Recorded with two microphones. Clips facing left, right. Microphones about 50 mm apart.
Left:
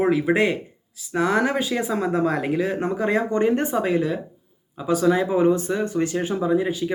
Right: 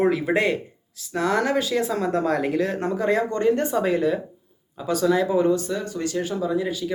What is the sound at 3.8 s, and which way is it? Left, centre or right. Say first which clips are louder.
Speech: even; centre.